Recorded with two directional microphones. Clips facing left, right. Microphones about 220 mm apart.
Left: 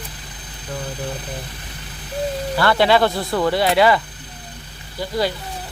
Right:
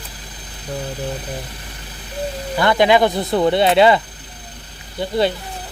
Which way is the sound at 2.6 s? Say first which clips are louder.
Right 2 dB; 15° right (ahead or behind).